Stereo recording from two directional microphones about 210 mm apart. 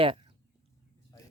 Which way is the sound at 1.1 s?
15° left (ahead or behind).